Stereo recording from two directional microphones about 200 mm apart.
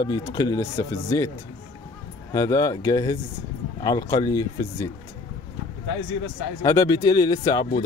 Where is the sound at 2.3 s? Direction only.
15° left (ahead or behind).